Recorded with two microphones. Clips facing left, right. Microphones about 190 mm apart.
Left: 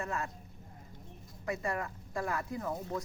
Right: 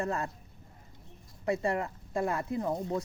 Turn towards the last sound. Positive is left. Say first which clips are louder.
# right 5 dB
turn(degrees=-25)  # may be behind; listen again after turning